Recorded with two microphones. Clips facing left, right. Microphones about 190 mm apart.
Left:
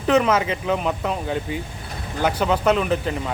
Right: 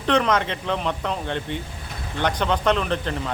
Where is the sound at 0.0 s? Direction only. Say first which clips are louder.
Left 3 dB; 5° left (ahead or behind).